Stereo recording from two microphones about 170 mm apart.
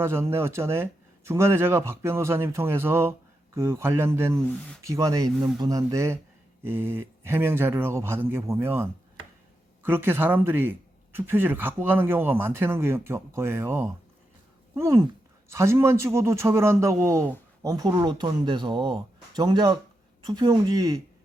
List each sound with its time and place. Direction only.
0.0 s speech: 15° right (ahead or behind)